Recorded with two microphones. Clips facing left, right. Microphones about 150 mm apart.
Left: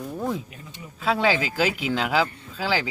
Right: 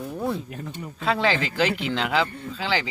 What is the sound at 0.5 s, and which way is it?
Speech, 65° right (ahead or behind).